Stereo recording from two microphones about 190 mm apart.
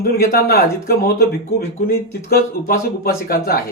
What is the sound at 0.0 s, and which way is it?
A man's voice, 55° left (ahead or behind).